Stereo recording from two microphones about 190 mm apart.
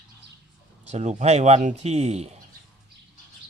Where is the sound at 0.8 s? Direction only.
35° right (ahead or behind).